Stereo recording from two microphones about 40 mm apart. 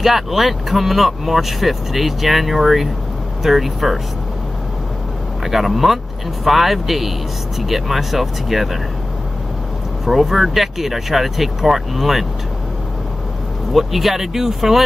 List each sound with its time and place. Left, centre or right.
0.0 s speech: centre
5.4 s speech: centre
10.0 s speech: centre
13.7 s speech: centre